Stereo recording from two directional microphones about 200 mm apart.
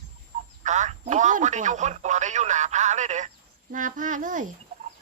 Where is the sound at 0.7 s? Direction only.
35° right (ahead or behind).